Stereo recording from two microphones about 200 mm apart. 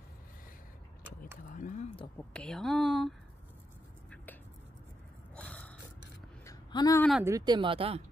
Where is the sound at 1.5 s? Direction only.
40° left (ahead or behind).